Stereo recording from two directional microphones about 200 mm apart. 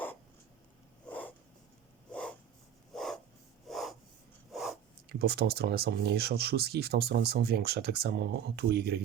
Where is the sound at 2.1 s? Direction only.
5° left (ahead or behind).